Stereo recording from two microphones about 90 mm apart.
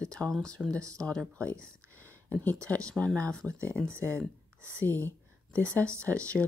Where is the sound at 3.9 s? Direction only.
30° right (ahead or behind).